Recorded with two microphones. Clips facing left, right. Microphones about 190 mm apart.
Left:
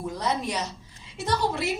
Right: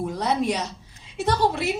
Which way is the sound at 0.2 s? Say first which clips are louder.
Right 4 dB; 60° right (ahead or behind).